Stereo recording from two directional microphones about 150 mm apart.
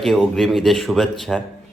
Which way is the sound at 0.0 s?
Centre (ahead or behind).